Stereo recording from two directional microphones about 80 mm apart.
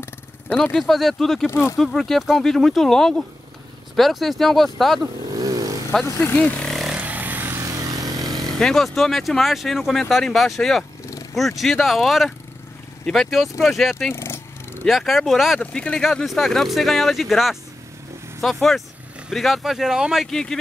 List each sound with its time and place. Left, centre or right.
0.7 s speech: centre
1.5 s speech: left
1.8 s speech: centre
5.3 s motorcycle: right
7.0 s vehicle: right
7.6 s vehicle: right
8.5 s speech: centre
14.1 s purr: left
14.9 s speech: centre
15.6 s speech: centre
20.2 s speech: centre